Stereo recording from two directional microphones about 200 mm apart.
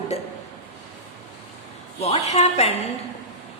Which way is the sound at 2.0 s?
35° left (ahead or behind).